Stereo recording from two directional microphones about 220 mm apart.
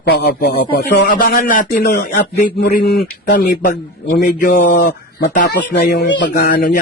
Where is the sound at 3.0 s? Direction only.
35° left (ahead or behind).